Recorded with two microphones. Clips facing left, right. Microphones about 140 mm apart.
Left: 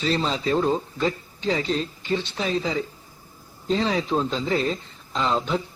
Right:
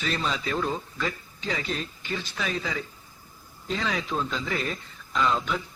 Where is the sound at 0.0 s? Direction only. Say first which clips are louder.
Left 5 dB; 30° left (ahead or behind).